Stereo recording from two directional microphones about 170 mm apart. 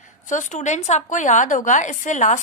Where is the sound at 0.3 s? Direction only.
45° left (ahead or behind).